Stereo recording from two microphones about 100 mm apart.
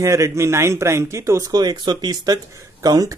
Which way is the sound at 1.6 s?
45° right (ahead or behind).